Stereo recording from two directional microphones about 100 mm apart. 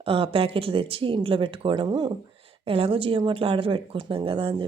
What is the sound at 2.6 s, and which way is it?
Speech, 65° right (ahead or behind).